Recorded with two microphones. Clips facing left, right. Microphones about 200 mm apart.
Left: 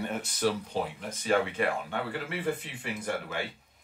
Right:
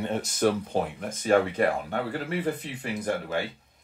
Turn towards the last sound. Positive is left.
turn(degrees=-40)  # may be behind; listen again after turning